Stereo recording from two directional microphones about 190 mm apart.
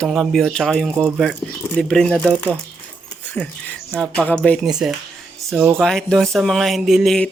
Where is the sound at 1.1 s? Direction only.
Centre (ahead or behind).